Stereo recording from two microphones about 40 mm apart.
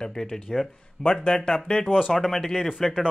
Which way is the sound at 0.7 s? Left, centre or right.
Centre.